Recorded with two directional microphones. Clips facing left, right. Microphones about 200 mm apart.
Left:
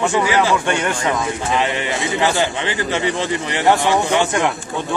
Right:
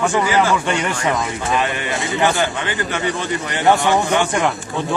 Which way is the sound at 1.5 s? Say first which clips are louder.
Even; 20° left (ahead or behind).